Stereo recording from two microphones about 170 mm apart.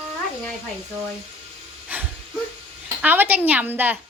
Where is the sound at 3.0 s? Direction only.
10° right (ahead or behind).